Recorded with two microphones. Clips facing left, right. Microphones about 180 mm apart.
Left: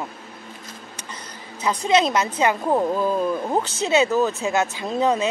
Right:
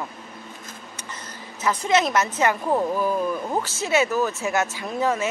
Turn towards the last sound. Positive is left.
turn(degrees=20)  # may be behind; listen again after turning